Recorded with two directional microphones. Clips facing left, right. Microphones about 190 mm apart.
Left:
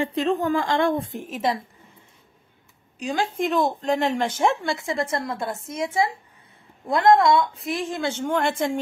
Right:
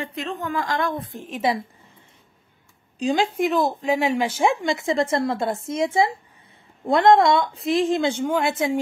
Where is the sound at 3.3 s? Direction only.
5° right (ahead or behind); by 8.2 s 20° right (ahead or behind).